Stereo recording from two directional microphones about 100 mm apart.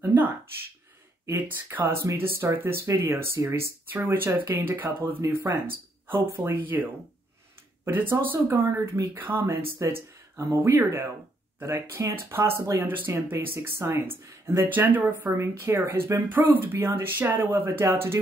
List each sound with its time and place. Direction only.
0.0 s a sound: 20° right (ahead or behind)
1.2 s speech: 20° right (ahead or behind)
9.8 s speech: 30° right (ahead or behind)